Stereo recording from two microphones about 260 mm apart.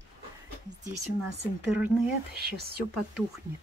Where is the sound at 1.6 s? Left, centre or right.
Centre.